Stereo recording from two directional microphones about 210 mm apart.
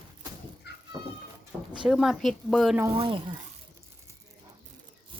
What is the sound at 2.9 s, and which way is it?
Speech, 25° right (ahead or behind).